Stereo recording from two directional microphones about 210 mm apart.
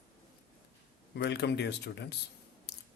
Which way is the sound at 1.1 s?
55° left (ahead or behind).